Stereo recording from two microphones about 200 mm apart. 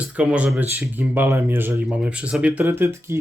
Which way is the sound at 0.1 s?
5° right (ahead or behind).